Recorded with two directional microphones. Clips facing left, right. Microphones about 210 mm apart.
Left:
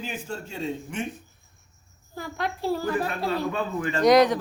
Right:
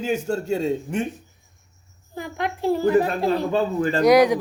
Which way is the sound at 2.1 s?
15° right (ahead or behind).